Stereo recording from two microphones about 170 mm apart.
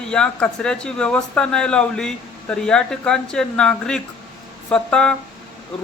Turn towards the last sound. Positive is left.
turn(degrees=5)  # may be behind; listen again after turning